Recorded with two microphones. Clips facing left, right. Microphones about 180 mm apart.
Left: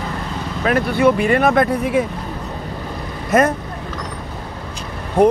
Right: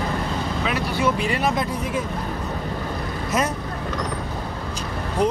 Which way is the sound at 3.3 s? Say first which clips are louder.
Left 9 dB; 55° left (ahead or behind).